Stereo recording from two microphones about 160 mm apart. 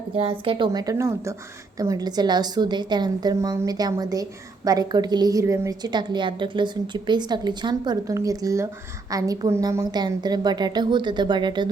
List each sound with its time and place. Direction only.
0.2 s a woman's voice: 35° right (ahead or behind)